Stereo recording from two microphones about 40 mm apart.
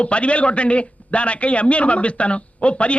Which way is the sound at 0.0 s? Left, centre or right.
Left.